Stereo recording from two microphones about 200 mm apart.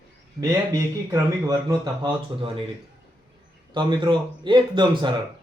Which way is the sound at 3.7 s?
20° right (ahead or behind).